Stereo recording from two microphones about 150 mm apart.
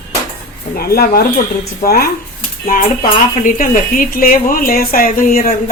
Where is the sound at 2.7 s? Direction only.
65° left (ahead or behind).